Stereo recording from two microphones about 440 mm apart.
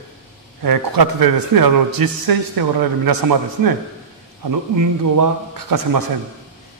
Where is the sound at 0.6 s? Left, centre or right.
Right.